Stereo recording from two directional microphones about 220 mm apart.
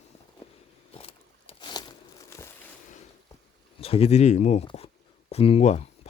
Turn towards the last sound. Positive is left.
turn(degrees=30)  # may be behind; listen again after turning